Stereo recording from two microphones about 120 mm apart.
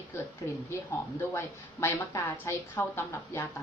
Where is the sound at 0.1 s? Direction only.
20° left (ahead or behind).